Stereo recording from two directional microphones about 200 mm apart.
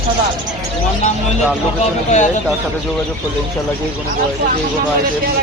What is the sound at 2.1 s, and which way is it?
Speech, 35° left (ahead or behind).